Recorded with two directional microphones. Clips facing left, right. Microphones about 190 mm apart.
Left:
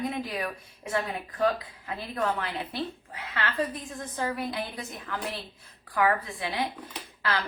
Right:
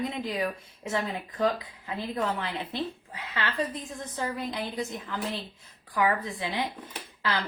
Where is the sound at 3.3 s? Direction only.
20° right (ahead or behind).